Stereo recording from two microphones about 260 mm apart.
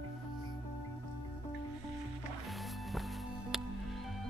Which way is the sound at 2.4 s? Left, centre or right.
Centre.